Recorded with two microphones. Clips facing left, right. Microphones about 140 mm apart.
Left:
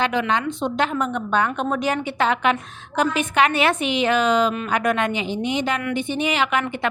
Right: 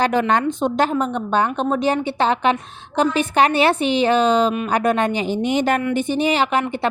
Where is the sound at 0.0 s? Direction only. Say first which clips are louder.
Right 4 dB; 40° right (ahead or behind).